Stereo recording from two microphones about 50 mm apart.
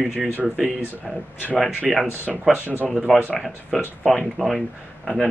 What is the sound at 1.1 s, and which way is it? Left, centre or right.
Speech, centre.